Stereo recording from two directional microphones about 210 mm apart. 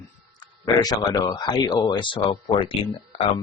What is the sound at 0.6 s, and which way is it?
Speech, 15° left (ahead or behind).